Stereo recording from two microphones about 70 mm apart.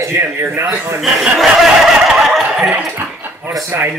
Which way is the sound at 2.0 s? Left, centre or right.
Centre.